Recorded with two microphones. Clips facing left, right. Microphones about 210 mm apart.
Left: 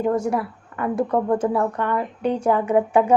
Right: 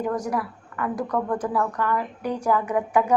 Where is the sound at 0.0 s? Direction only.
25° left (ahead or behind).